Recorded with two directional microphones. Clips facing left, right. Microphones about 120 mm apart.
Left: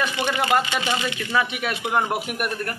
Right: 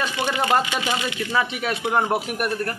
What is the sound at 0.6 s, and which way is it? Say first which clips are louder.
Speech: even; 10° right (ahead or behind).